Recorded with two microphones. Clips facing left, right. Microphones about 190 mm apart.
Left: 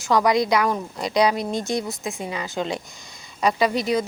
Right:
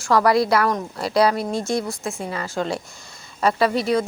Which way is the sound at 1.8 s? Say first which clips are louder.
Right 1 dB; 20° left (ahead or behind).